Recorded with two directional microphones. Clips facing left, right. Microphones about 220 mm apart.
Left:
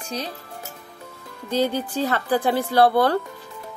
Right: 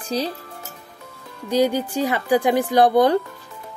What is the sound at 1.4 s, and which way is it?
Speech, 10° right (ahead or behind).